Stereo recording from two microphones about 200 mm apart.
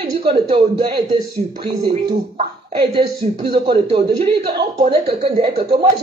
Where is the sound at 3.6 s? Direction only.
25° right (ahead or behind).